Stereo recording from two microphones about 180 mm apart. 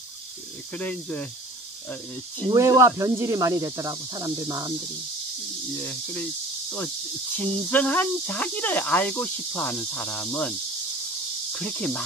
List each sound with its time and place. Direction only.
0.7 s speech: 10° left (ahead or behind)
2.5 s speech: 15° right (ahead or behind)
7.3 s speech: 10° left (ahead or behind)
11.5 s speech: 5° left (ahead or behind)